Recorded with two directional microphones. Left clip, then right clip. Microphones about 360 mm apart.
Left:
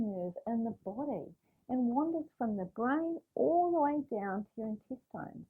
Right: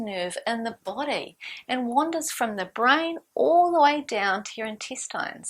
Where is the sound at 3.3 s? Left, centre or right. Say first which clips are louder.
Right 10 dB; centre.